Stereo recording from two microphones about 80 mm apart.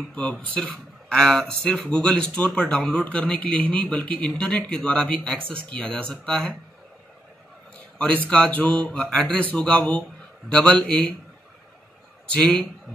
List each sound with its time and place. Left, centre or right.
0.1 s speech: centre
8.3 s speech: centre
12.3 s speech: centre